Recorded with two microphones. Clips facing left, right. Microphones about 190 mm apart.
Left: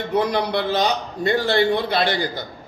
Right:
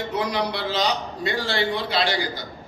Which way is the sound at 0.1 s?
55° left (ahead or behind).